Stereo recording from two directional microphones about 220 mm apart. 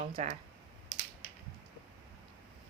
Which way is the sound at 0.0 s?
30° right (ahead or behind).